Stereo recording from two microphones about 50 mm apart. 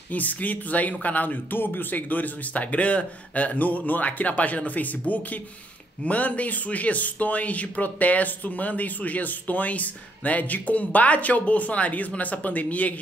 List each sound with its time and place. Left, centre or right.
0.1 s speech: left